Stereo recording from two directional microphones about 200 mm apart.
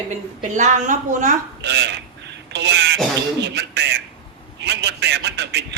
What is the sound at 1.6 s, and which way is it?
A man's voice, 60° right (ahead or behind).